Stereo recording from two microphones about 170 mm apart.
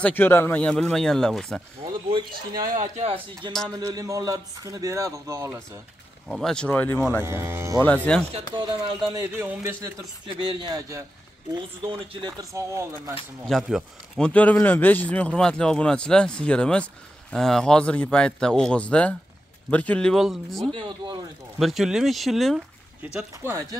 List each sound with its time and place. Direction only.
0.0 s speech: 10° left (ahead or behind)
1.9 s a man's voice: 25° right (ahead or behind)
2.6 s speech: 45° right (ahead or behind)
3.6 s a man's voice: 20° right (ahead or behind)
6.2 s a man's voice: centre (ahead or behind)
7.2 s speech: 15° right (ahead or behind)
7.8 s speech: 10° left (ahead or behind)
9.1 s speech: 20° right (ahead or behind)
10.2 s a man's voice: 30° right (ahead or behind)
13.5 s a man's voice: centre (ahead or behind)
20.7 s a man's voice: 25° right (ahead or behind)
21.5 s a man's voice: centre (ahead or behind)
23.4 s speech: 15° right (ahead or behind)